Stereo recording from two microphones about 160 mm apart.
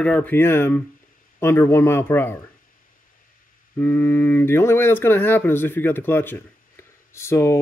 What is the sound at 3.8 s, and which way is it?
Speech, 10° left (ahead or behind).